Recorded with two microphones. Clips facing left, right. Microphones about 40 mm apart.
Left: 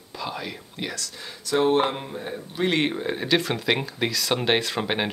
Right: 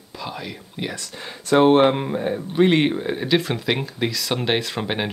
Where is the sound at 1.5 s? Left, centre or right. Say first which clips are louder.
Right 6 dB; right; by 2.9 s centre.